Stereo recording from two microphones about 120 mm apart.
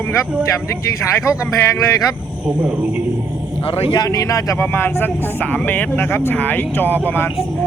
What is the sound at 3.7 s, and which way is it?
Speech, 50° left (ahead or behind).